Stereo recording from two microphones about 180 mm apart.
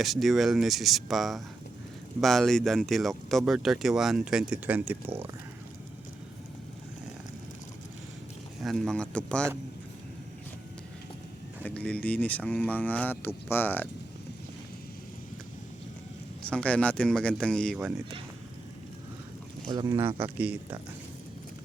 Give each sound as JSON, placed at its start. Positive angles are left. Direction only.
{"t": 0.0, "sound": "speech", "side_deg": 0}
{"t": 8.6, "sound": "speech", "side_deg": 0}
{"t": 11.6, "sound": "speech", "side_deg": 10}
{"t": 16.5, "sound": "speech", "side_deg": 5}
{"t": 17.7, "sound": "speech", "side_deg": -10}
{"t": 19.6, "sound": "speech", "side_deg": -25}
{"t": 20.2, "sound": "speech", "side_deg": -10}